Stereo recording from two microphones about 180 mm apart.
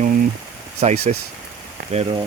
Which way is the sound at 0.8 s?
35° right (ahead or behind).